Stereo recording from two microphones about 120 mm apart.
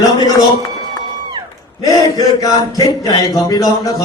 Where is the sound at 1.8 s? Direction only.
30° left (ahead or behind).